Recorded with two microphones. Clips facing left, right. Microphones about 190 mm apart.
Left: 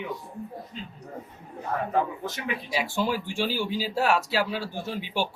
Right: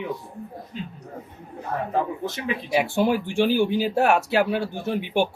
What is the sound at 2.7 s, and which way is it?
Speech, 55° right (ahead or behind).